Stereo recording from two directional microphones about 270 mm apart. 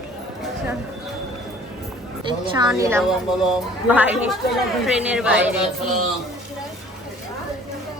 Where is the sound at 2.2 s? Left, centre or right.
Centre.